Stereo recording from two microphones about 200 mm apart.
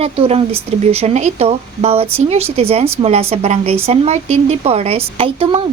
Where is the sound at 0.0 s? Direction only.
30° right (ahead or behind).